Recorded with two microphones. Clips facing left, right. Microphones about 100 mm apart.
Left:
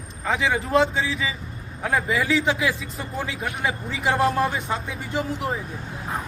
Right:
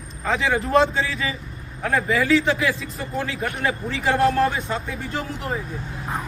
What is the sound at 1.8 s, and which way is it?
Speech, 10° left (ahead or behind).